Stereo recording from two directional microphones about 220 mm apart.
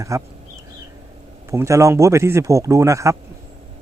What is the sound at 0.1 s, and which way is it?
Speech, 15° right (ahead or behind).